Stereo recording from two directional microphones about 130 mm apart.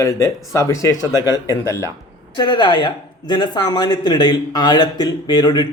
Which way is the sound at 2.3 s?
35° left (ahead or behind).